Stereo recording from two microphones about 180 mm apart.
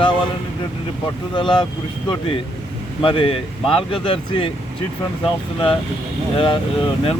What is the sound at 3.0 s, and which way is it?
Speech, 30° left (ahead or behind).